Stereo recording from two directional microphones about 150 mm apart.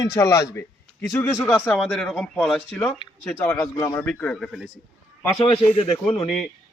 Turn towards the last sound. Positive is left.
turn(degrees=35)  # may be behind; listen again after turning